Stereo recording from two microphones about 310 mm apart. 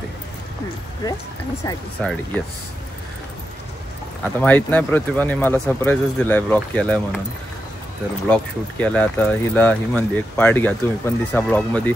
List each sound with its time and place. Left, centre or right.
1.0 s speech: centre
4.4 s speech: centre
8.3 s speech: centre